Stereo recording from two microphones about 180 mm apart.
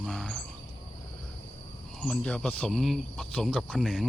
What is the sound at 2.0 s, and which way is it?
Speech, 5° left (ahead or behind).